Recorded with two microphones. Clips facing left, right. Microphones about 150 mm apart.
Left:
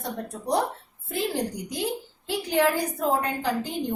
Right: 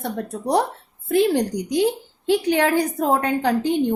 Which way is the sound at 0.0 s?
70° right (ahead or behind).